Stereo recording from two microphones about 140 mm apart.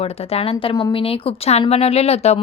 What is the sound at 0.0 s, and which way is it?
A woman's voice, 45° left (ahead or behind).